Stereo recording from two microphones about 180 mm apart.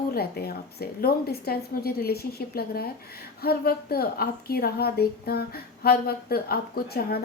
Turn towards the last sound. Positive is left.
turn(degrees=60)  # may be behind; listen again after turning